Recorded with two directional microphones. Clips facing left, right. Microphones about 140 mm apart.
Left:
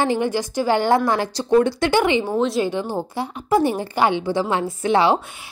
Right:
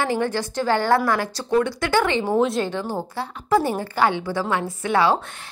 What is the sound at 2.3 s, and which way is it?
Speech, centre (ahead or behind).